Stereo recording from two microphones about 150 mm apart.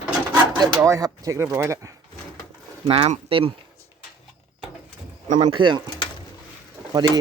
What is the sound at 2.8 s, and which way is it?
Speech, 40° right (ahead or behind).